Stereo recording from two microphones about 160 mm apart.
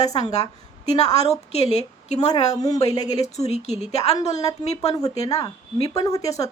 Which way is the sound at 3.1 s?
45° left (ahead or behind).